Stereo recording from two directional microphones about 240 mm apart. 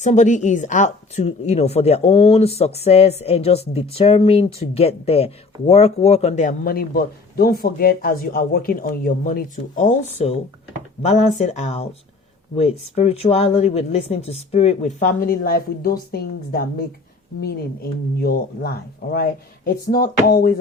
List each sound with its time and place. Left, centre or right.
0.0 s a woman's voice: left